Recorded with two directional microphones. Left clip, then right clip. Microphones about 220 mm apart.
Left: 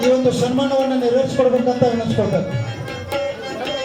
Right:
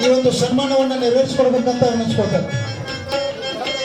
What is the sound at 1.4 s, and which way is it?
Speech, 45° right (ahead or behind).